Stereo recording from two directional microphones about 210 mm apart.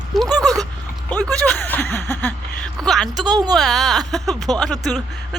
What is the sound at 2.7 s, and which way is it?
Speech, centre (ahead or behind).